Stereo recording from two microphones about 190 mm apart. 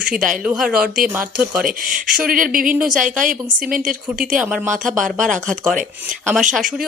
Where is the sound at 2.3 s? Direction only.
45° right (ahead or behind).